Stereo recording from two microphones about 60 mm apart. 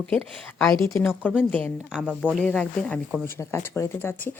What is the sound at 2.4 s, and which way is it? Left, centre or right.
Speech, centre.